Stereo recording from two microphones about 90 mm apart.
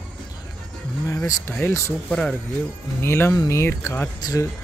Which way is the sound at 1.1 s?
40° left (ahead or behind).